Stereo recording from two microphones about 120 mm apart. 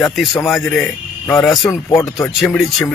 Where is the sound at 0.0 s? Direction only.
Centre (ahead or behind).